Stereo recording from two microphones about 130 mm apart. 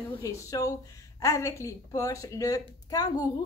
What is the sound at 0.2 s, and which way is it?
A woman's voice, 25° left (ahead or behind).